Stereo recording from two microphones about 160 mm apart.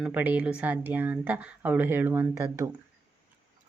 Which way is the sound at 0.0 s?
10° right (ahead or behind).